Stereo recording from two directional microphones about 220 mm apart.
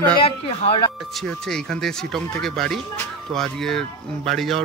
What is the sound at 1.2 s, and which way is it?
Speech, centre (ahead or behind).